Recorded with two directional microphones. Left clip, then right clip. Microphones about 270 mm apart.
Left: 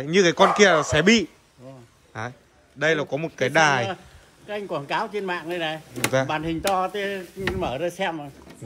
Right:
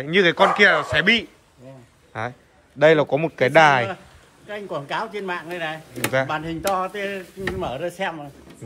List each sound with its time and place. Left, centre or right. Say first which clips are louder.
0.0 s a man's voice: right 1 dB; centre
2.1 s a man's voice: right 4 dB; centre
4.5 s speech: left 1 dB; left